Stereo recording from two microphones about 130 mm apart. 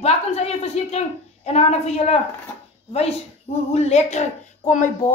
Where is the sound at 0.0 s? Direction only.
55° left (ahead or behind).